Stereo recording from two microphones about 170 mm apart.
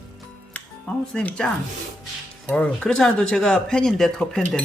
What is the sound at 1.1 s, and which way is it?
Speech, 5° left (ahead or behind).